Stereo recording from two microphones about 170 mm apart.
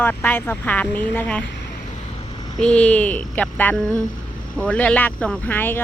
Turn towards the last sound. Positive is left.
turn(degrees=10)  # may be behind; listen again after turning